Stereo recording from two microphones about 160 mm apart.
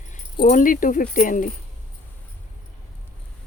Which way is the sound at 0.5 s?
60° left (ahead or behind).